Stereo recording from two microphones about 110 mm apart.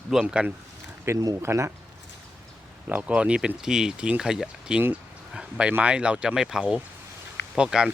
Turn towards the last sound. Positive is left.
turn(degrees=-5)  # may be behind; listen again after turning